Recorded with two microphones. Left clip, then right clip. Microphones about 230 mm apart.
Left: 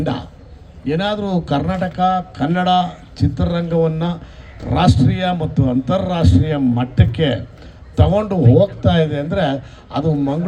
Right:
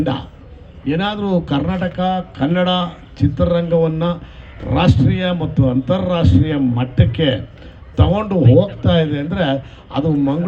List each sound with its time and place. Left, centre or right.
0.0 s a man's voice: left